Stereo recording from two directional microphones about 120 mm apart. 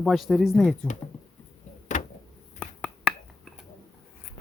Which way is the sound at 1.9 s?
90° left.